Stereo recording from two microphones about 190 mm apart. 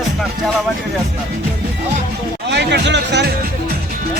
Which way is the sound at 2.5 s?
65° right (ahead or behind).